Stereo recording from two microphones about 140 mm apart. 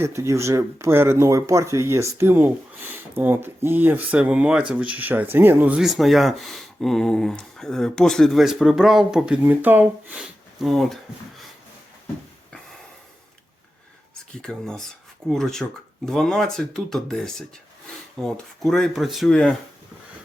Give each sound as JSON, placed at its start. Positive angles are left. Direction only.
{"t": 0.0, "sound": "speech", "side_deg": -20}
{"t": 10.6, "sound": "speech", "side_deg": 0}
{"t": 14.1, "sound": "speech", "side_deg": 5}